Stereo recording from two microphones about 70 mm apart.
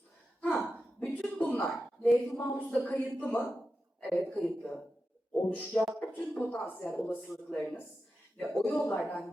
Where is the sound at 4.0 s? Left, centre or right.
Centre.